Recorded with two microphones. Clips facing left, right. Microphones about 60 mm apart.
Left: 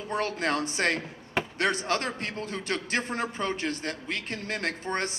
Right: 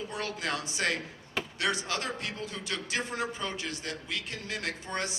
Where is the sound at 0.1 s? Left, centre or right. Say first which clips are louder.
Left 9 dB; left.